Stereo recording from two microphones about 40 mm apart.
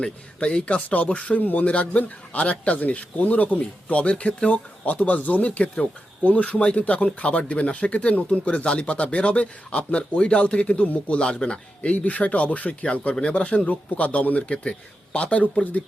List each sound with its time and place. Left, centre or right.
0.0 s speech: left
11.2 s speech: left
11.9 s speech: left
12.8 s speech: left
13.7 s speech: left